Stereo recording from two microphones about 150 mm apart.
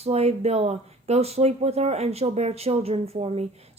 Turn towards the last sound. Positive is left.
turn(degrees=-40)  # may be behind; listen again after turning